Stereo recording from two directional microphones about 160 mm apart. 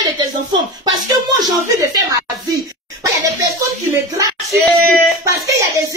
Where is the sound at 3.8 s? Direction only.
20° right (ahead or behind).